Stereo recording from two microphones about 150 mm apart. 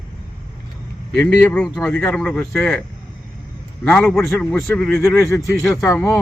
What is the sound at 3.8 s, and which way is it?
Speech, 5° left (ahead or behind).